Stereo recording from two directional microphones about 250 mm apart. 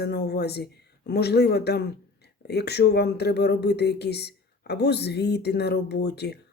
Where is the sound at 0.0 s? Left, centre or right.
Left.